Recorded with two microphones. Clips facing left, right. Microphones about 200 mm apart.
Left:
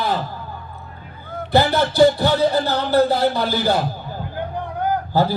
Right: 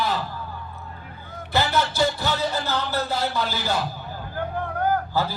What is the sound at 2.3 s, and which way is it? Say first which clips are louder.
Speech: left 8 dB; 55° left (ahead or behind).